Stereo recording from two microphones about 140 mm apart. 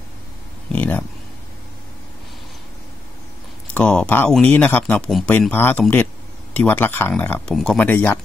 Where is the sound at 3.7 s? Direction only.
10° left (ahead or behind).